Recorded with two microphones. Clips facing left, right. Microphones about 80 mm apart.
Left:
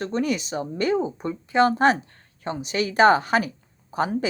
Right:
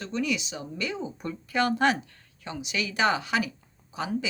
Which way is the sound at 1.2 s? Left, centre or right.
Left.